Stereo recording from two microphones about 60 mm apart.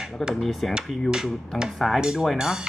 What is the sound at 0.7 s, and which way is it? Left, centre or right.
Hammer, centre.